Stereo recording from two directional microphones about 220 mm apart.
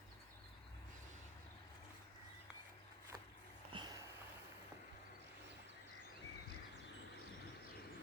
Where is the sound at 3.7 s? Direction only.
20° right (ahead or behind).